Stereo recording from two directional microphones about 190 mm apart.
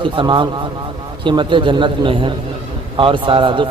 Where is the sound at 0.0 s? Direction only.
25° right (ahead or behind).